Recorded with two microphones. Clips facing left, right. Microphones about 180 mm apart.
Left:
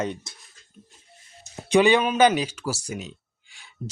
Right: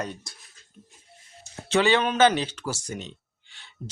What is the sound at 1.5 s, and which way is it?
Speech, 15° left (ahead or behind).